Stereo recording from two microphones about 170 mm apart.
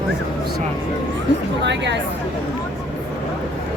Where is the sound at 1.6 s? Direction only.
90° right.